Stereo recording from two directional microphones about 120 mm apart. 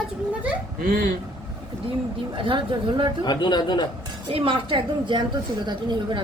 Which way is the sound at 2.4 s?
40° right (ahead or behind).